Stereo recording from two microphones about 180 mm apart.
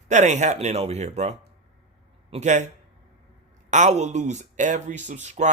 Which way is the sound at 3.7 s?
40° right (ahead or behind).